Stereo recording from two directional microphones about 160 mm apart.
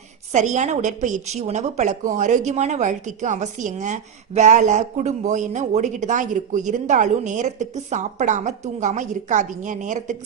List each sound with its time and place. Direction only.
0.3 s a woman's voice: 50° right (ahead or behind)